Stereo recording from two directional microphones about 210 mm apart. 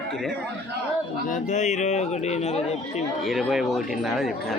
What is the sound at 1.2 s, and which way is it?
Speech, 35° left (ahead or behind).